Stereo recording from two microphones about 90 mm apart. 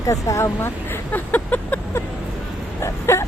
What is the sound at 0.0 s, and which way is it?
Vehicle, 35° left (ahead or behind).